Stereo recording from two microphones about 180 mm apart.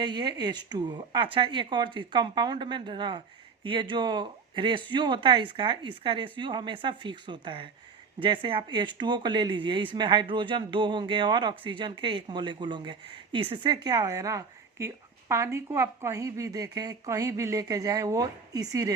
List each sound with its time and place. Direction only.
0.0 s speech: 25° right (ahead or behind)